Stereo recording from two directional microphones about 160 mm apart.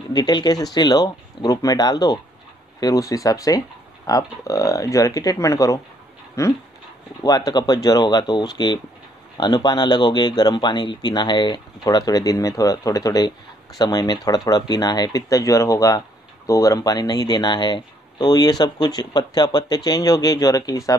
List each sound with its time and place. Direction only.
0.1 s speech: 25° left (ahead or behind)